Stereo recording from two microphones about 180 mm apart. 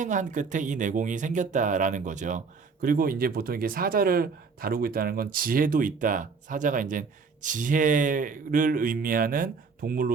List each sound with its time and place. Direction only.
0.0 s speech: 45° right (ahead or behind)